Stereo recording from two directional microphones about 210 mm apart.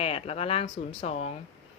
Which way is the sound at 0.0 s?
30° left (ahead or behind).